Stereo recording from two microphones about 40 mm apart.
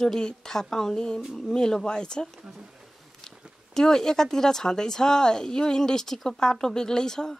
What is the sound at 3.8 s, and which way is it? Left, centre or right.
Speech, centre.